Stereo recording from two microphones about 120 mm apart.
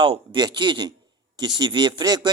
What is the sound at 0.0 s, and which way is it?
A man's voice, 50° right (ahead or behind).